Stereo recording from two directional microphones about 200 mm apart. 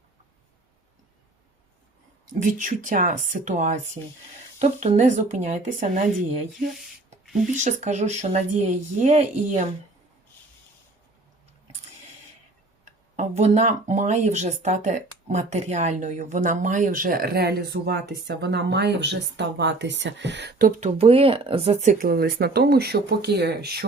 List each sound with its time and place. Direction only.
2.4 s speech: 40° right (ahead or behind)
4.0 s speech: 20° right (ahead or behind)
4.6 s speech: 35° right (ahead or behind)
12.8 s speech: 35° right (ahead or behind)
20.8 s speech: 30° right (ahead or behind); by 23.8 s 55° right (ahead or behind)